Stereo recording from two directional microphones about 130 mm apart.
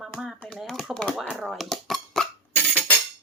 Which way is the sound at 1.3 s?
Centre (ahead or behind).